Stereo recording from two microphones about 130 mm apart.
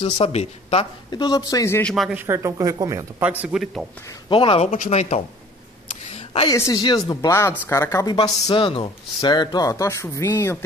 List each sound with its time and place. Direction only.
0.0 s speech: 55° left (ahead or behind)
1.1 s speech: 30° left (ahead or behind)
1.8 s speech: 5° left (ahead or behind)
2.0 s speech: 15° right (ahead or behind)
3.2 s a man's voice: 10° right (ahead or behind)
4.3 s speech: 45° left (ahead or behind)
4.6 s speech: 80° left
6.1 s a sound: 55° left (ahead or behind)
6.5 s speech: 25° left (ahead or behind)
8.5 s speech: 40° left (ahead or behind); by 10.6 s 20° left (ahead or behind)